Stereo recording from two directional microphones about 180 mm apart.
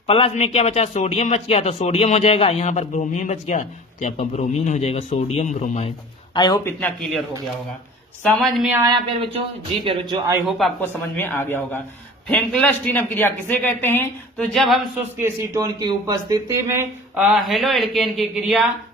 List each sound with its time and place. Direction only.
0.1 s a man's voice: 35° left (ahead or behind)
6.3 s speech: 25° left (ahead or behind)
6.7 s a woman's voice: 10° left (ahead or behind)
8.2 s a woman's voice: centre (ahead or behind)
8.9 s speech: 25° right (ahead or behind)
10.8 s a woman's voice: 10° left (ahead or behind)
15.2 s speech: 20° right (ahead or behind); by 18.6 s centre (ahead or behind)